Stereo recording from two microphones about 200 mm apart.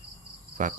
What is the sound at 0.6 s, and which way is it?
Speech, 40° right (ahead or behind).